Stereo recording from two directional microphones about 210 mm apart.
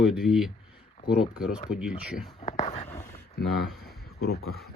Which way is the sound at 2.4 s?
30° left (ahead or behind).